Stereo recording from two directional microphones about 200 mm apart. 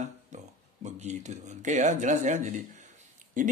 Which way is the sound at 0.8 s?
35° right (ahead or behind).